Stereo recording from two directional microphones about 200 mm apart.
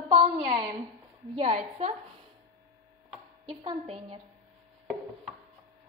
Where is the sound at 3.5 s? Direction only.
25° right (ahead or behind).